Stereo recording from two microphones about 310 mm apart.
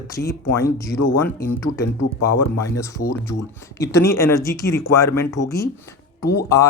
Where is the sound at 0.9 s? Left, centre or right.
Left.